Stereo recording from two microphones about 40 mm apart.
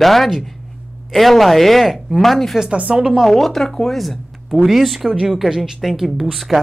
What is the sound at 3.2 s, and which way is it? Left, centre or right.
Speech, centre.